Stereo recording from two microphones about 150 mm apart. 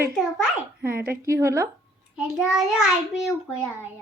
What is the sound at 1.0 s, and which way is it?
Speech, 20° right (ahead or behind).